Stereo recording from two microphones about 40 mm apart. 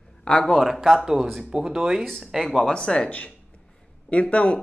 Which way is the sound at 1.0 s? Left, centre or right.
Centre.